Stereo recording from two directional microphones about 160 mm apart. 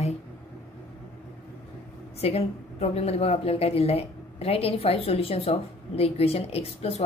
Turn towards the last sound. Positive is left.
turn(degrees=40)  # may be behind; listen again after turning